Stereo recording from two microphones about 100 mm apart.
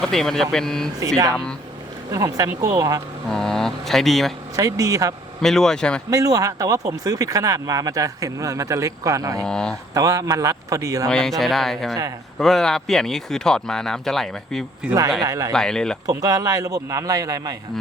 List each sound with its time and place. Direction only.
0.0 s speech: 5° left (ahead or behind)
2.0 s speech: 35° right (ahead or behind)
3.2 s speech: 5° left (ahead or behind)
4.5 s speech: 35° right (ahead or behind)
5.4 s speech: 5° left (ahead or behind)
6.1 s speech: 35° right (ahead or behind)
9.4 s speech: 5° left (ahead or behind)
9.9 s speech: 35° right (ahead or behind)
11.1 s speech: 5° left (ahead or behind)
14.8 s speech: 10° right (ahead or behind)
15.2 s speech: 35° right (ahead or behind)
15.5 s speech: 5° left (ahead or behind)
16.0 s speech: 35° right (ahead or behind)